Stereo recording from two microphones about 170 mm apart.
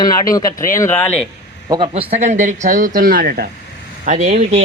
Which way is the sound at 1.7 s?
30° right (ahead or behind).